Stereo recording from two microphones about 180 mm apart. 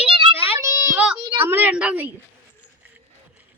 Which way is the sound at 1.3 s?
10° right (ahead or behind).